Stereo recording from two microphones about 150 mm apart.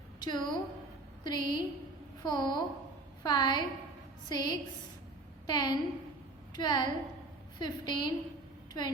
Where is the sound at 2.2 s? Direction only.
30° left (ahead or behind).